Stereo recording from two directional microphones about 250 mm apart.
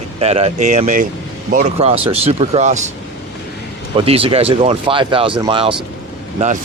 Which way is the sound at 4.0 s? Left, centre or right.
Right.